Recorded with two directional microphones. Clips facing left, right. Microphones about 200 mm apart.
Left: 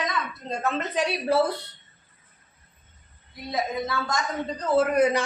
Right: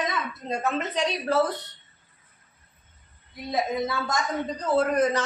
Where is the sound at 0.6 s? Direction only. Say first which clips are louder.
Left 1 dB; 5° right (ahead or behind).